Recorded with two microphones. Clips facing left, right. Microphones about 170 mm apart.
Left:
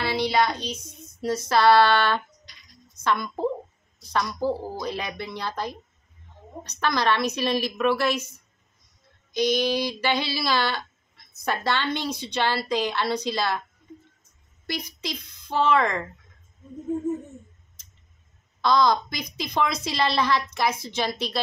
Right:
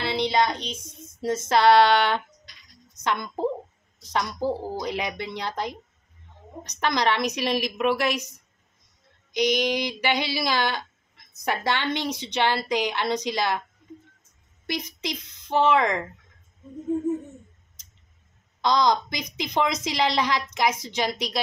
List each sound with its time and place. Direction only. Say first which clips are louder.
0.1 s child singing: right 1 dB; 20° right (ahead or behind)
1.2 s a woman's voice: even; 25° right (ahead or behind)
14.7 s a woman's voice: right 2 dB; 20° right (ahead or behind)
18.6 s a woman's voice: left 1 dB; 20° right (ahead or behind)